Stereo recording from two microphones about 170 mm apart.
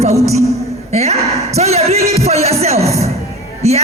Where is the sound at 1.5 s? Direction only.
40° right (ahead or behind).